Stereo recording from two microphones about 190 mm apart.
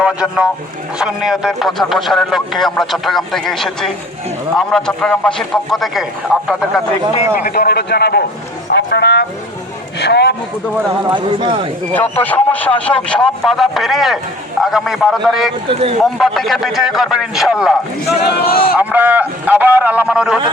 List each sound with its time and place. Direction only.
0.0 s speech: 5° right (ahead or behind)
7.3 s speech: 50° left (ahead or behind)
11.0 s speech: 25° right (ahead or behind)
12.2 s speech: 10° left (ahead or behind)
18.3 s speech: 55° left (ahead or behind)
18.8 s a man's voice: 10° right (ahead or behind)